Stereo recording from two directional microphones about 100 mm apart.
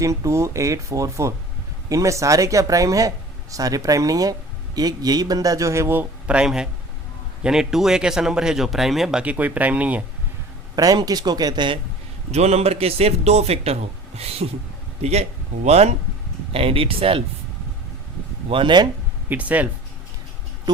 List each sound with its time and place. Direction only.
0.0 s speech: 35° right (ahead or behind)
6.3 s speech: 5° right (ahead or behind)
10.8 s speech: 40° right (ahead or behind)
12.3 s a man's voice: 90° right
16.5 s speech: 70° right (ahead or behind)
18.4 s speech: 55° right (ahead or behind)
19.3 s speech: 15° right (ahead or behind)